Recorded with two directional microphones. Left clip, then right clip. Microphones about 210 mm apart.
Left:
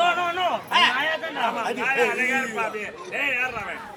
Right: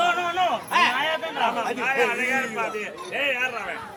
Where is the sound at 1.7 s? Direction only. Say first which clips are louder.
Left 1 dB; 5° left (ahead or behind).